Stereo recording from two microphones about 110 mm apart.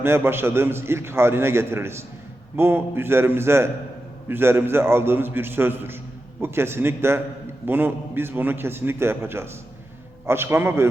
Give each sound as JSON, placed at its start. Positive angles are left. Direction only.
{"t": 0.0, "sound": "a man's voice", "side_deg": -20}